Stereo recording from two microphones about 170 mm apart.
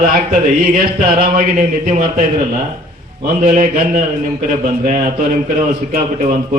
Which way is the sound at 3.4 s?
50° right (ahead or behind).